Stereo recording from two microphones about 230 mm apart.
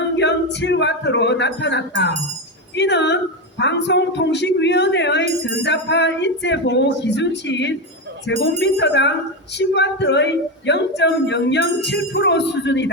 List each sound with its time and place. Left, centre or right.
0.2 s speech: left